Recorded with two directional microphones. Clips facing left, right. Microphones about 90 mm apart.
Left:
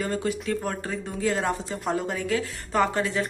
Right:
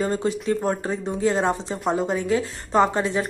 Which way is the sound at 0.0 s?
25° right (ahead or behind).